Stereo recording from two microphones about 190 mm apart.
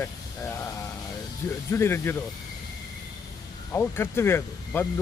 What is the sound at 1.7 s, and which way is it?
Speech, 10° left (ahead or behind).